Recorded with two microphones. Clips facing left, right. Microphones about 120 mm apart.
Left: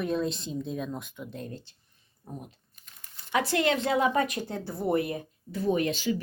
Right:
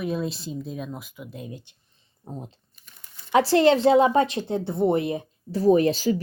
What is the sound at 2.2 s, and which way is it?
A woman's voice, 25° right (ahead or behind).